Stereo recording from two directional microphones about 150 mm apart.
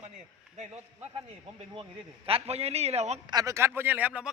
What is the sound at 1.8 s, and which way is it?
A man's voice, 40° right (ahead or behind).